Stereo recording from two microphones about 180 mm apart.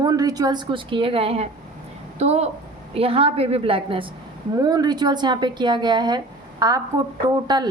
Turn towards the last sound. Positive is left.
turn(degrees=-25)  # may be behind; listen again after turning